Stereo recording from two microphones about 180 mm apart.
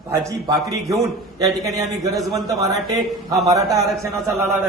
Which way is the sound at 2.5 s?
20° right (ahead or behind).